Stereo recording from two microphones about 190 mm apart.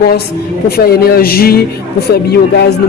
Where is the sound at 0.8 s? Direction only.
55° left (ahead or behind).